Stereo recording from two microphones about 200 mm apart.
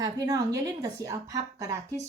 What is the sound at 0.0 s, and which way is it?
A woman's voice, 20° right (ahead or behind).